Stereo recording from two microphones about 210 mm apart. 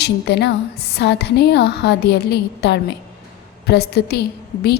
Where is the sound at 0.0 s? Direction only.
55° left (ahead or behind).